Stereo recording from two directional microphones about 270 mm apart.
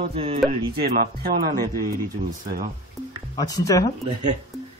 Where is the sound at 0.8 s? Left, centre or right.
Right.